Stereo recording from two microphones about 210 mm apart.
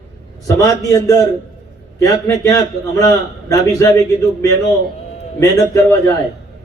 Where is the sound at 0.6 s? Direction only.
15° left (ahead or behind).